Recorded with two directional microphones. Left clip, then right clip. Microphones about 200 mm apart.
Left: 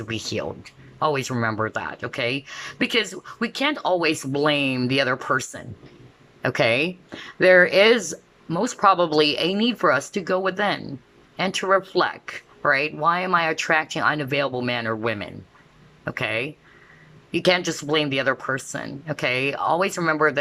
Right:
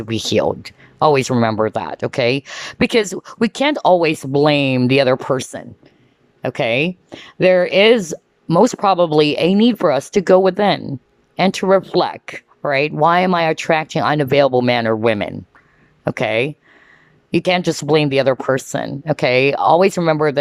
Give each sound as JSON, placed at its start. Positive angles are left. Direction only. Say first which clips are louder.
{"t": 0.0, "sound": "speech", "louder": "right 11 dB", "side_deg": -25}
{"t": 8.1, "sound": "speech", "louder": "right 12 dB", "side_deg": -25}